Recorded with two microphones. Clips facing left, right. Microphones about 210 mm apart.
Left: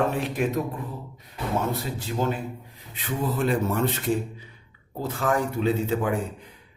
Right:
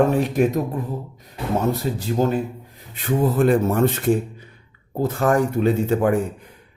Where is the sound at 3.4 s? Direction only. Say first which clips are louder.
Right 6 dB; 50° right (ahead or behind).